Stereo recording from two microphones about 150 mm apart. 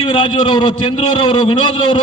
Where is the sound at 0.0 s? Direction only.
30° left (ahead or behind).